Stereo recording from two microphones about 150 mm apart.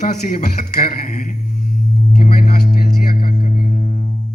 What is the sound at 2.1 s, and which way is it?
Music, 60° left (ahead or behind).